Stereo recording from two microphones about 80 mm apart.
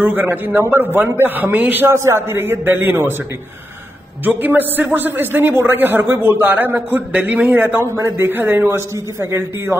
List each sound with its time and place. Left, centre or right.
0.0 s a man's voice: right
2.0 s a man's voice: right
4.2 s a man's voice: right